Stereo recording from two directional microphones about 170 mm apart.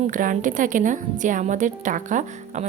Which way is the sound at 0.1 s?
50° right (ahead or behind).